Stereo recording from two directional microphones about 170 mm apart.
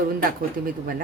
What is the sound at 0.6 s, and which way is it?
Speech, 60° right (ahead or behind).